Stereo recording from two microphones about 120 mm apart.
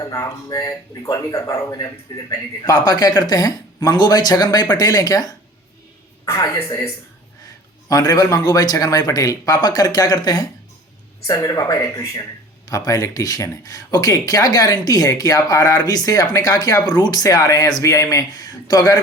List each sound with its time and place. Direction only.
0.0 s speech: 30° left (ahead or behind)
6.4 s speech: 30° left (ahead or behind)